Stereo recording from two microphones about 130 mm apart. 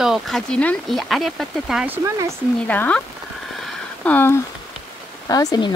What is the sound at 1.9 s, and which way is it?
Speech, 25° right (ahead or behind).